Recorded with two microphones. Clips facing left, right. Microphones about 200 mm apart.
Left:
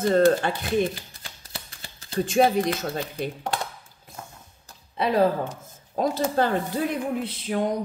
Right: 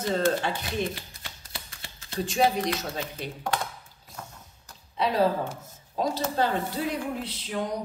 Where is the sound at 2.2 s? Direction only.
50° left (ahead or behind).